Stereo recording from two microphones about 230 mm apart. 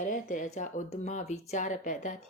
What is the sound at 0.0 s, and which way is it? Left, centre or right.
A woman's voice, left.